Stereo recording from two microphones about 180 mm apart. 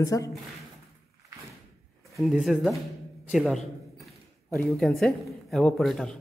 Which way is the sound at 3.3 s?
Centre (ahead or behind).